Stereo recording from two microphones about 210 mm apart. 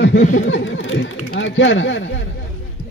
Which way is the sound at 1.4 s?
60° left (ahead or behind).